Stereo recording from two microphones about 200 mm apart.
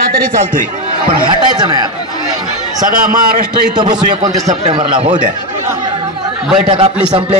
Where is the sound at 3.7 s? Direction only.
20° right (ahead or behind).